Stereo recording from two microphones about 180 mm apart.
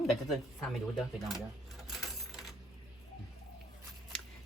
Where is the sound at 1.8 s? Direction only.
Centre (ahead or behind).